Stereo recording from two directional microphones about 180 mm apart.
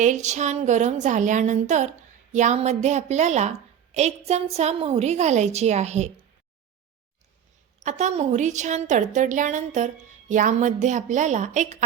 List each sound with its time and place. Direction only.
0.0 s a woman's voice: 40° right (ahead or behind)
7.8 s a woman's voice: 40° right (ahead or behind)